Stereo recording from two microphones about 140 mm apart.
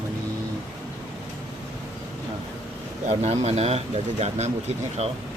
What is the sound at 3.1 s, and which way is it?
Speech, 50° right (ahead or behind).